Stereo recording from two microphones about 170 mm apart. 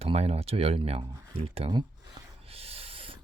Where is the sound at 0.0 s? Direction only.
35° right (ahead or behind).